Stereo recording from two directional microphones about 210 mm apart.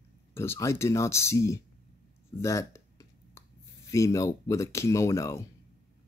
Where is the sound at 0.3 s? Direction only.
10° left (ahead or behind).